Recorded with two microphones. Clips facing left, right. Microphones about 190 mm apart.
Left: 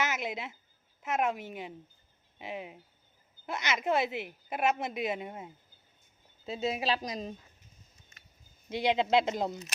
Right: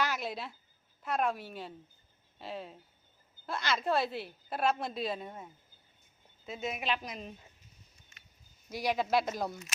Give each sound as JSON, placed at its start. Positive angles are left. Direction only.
{"t": 0.0, "sound": "a sound", "side_deg": 20}
{"t": 1.0, "sound": "a woman's voice", "side_deg": 20}
{"t": 6.4, "sound": "a woman's voice", "side_deg": 30}
{"t": 8.7, "sound": "a woman's voice", "side_deg": 25}